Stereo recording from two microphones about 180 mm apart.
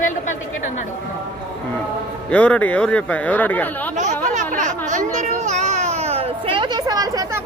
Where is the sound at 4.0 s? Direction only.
45° right (ahead or behind); by 7.2 s 20° right (ahead or behind).